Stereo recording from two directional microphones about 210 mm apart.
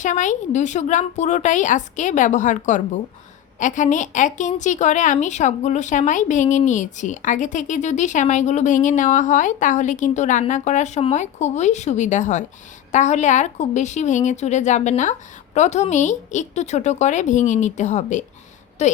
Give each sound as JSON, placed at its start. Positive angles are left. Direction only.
{"t": 0.0, "sound": "a woman's voice", "side_deg": 35}